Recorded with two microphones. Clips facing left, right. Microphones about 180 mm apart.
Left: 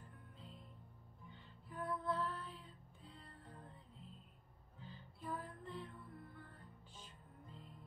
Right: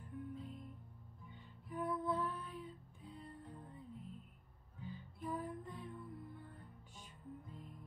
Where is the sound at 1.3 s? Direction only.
15° right (ahead or behind).